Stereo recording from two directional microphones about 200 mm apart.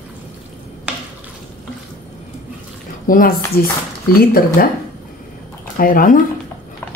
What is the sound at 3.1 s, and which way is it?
Speech, 45° left (ahead or behind).